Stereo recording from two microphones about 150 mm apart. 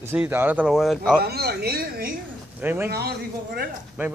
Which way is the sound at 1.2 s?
90° right.